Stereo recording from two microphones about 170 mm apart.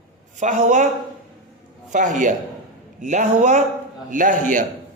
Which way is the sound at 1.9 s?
45° right (ahead or behind).